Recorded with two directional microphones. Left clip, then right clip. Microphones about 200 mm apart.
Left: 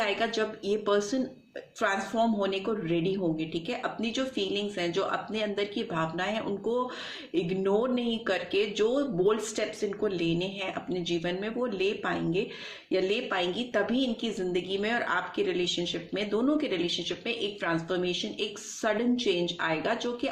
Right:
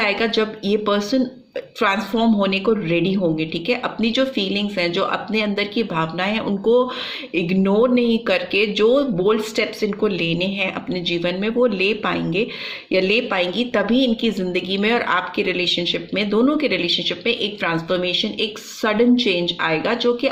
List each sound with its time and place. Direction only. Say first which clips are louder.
0.0 s speech: right 9 dB; 35° right (ahead or behind)